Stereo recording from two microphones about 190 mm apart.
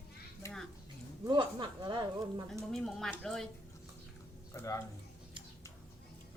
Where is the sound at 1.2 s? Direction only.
25° right (ahead or behind).